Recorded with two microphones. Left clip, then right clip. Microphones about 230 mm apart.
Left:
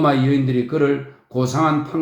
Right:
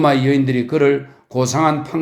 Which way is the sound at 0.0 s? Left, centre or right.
Right.